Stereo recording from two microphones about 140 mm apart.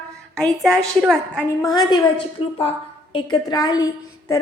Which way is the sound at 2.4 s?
45° left (ahead or behind).